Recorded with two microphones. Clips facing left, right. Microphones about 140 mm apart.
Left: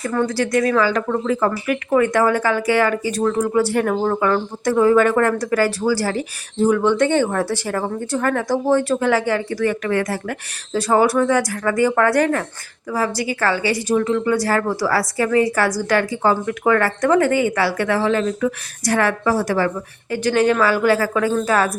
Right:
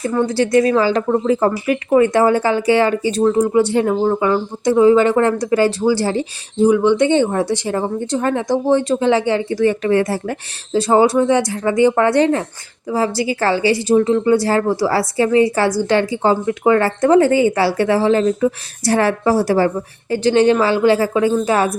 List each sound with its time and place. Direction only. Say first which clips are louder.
0.0 s speech: right 3 dB; 20° right (ahead or behind)